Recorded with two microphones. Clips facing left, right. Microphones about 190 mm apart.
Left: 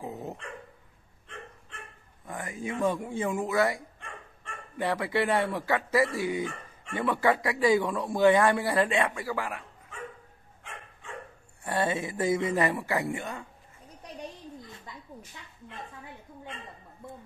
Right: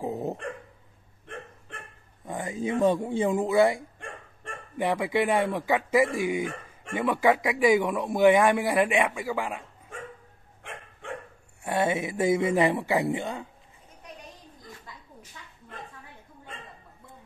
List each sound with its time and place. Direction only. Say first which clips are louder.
0.0 s dog: right 7 dB; 30° right (ahead or behind)
1.2 s dog: right 4 dB; 55° right (ahead or behind)
2.2 s a man's voice: right 5 dB; 20° right (ahead or behind)
10.6 s dog: right 5 dB; 60° right (ahead or behind)
11.6 s a man's voice: right 3 dB; 15° right (ahead or behind)